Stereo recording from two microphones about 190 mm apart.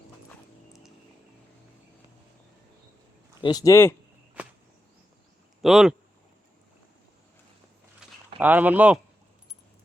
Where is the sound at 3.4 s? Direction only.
20° left (ahead or behind).